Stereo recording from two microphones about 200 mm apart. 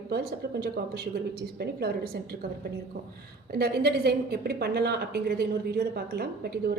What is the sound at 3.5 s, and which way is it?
A woman's voice, 55° right (ahead or behind).